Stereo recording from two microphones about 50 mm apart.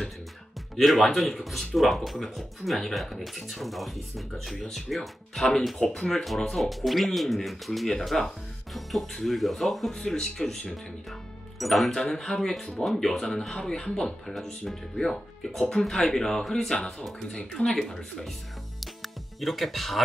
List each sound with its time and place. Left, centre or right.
0.7 s speech: centre
17.6 s speech: centre
19.4 s speech: centre